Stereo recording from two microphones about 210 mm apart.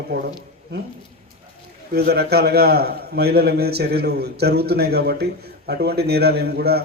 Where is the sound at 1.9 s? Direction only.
50° right (ahead or behind).